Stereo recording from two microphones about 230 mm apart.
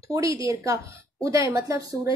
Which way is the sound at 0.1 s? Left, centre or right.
Centre.